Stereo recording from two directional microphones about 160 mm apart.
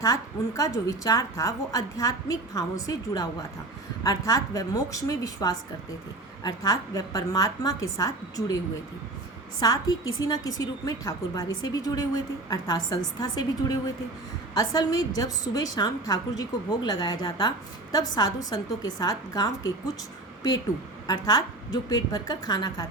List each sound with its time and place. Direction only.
0.0 s a woman's voice: 20° left (ahead or behind)
9.6 s a woman's voice: 25° left (ahead or behind)
18.5 s a woman's voice: 25° left (ahead or behind)
21.1 s a woman's voice: 25° left (ahead or behind)